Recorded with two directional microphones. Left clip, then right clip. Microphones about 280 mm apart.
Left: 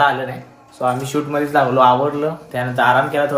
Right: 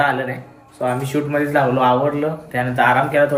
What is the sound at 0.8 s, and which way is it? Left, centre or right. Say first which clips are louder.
Speech: left 1 dB; centre.